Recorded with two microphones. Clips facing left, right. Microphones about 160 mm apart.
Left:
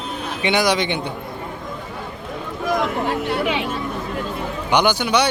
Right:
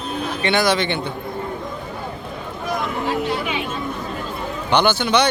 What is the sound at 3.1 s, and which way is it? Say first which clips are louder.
Speech: left 1 dB; 60° left (ahead or behind).